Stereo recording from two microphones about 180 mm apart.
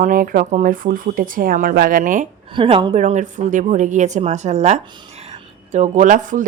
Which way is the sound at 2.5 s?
30° right (ahead or behind).